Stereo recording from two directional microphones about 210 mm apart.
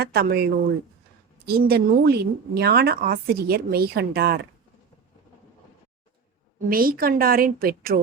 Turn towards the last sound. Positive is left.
turn(degrees=-45)  # may be behind; listen again after turning